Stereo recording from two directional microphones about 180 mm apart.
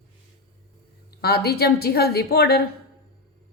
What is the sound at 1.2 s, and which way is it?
A woman's voice, 60° left (ahead or behind).